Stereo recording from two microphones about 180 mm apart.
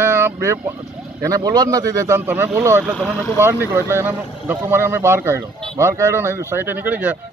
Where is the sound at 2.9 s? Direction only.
10° left (ahead or behind).